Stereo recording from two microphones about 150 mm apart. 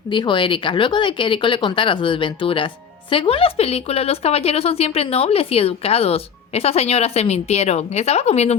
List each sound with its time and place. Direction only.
0.1 s speech: 30° left (ahead or behind)